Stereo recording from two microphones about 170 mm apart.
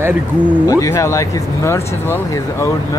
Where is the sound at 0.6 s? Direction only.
20° left (ahead or behind).